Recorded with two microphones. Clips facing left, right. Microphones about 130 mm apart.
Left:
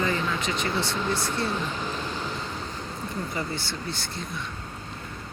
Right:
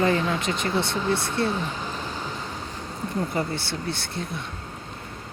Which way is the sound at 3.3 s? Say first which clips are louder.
Right 4 dB; 60° right (ahead or behind).